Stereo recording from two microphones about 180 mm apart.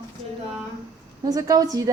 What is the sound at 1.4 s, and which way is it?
Speech, 20° right (ahead or behind).